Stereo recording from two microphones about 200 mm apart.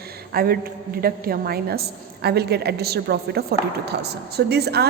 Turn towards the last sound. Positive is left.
turn(degrees=-55)  # may be behind; listen again after turning